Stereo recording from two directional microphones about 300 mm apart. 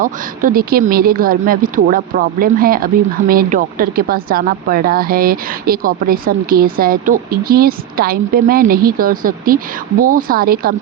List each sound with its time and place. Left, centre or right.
0.0 s speech: right